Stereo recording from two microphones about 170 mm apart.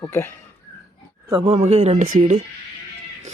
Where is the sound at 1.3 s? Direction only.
30° right (ahead or behind).